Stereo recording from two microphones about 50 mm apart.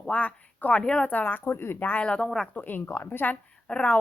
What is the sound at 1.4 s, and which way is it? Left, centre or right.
Speech, left.